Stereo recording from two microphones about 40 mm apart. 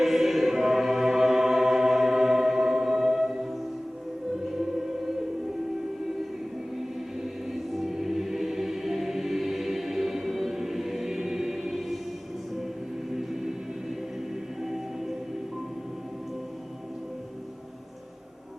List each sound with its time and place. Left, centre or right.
0.0 s choir: centre
4.8 s music: centre
6.7 s choir: centre
13.1 s music: centre
14.6 s music: centre